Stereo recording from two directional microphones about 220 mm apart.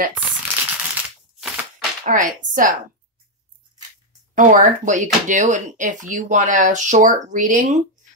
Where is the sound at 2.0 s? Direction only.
35° right (ahead or behind).